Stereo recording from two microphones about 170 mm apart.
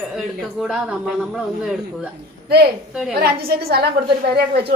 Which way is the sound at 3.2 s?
65° right (ahead or behind).